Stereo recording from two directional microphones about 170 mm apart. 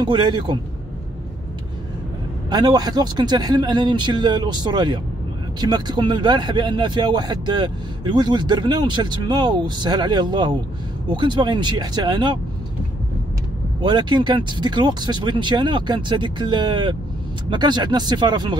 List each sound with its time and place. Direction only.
0.0 s speech: 25° right (ahead or behind)
2.5 s speech: 25° right (ahead or behind)
13.7 s speech: 25° right (ahead or behind)